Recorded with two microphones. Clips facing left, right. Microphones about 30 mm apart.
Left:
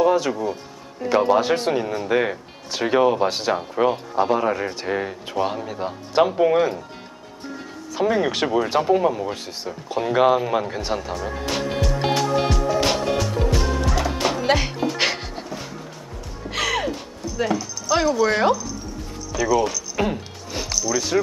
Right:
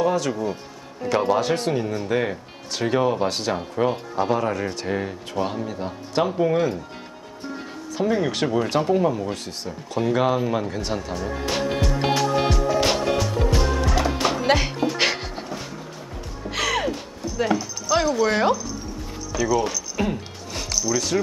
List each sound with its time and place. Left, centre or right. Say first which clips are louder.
0.0 s speech: left 3 dB; centre
0.3 s speech: left 1 dB; centre
8.0 s speech: left 2 dB; centre
11.4 s music: even; centre
16.4 s a sound: even; centre
17.8 s speech: left 1 dB; centre
20.2 s music: left 2 dB; centre